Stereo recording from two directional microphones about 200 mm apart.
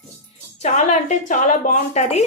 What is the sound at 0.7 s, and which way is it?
A woman's voice, 35° left (ahead or behind).